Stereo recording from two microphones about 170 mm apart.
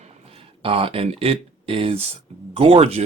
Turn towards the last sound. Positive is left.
turn(degrees=-35)  # may be behind; listen again after turning